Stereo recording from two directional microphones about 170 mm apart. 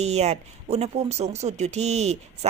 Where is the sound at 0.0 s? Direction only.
40° right (ahead or behind).